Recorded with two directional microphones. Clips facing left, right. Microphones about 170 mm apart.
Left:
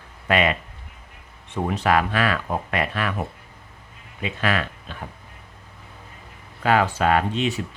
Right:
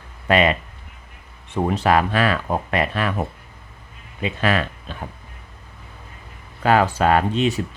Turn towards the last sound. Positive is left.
turn(degrees=-40)  # may be behind; listen again after turning